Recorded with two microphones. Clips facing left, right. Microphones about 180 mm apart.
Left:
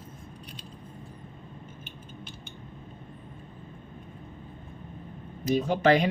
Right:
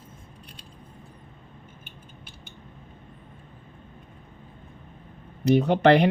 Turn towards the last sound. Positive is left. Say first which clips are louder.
# right 4 dB
turn(degrees=-65)  # may be behind; listen again after turning